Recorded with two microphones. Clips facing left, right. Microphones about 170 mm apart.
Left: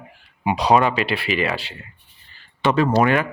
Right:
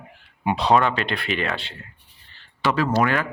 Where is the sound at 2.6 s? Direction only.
20° left (ahead or behind).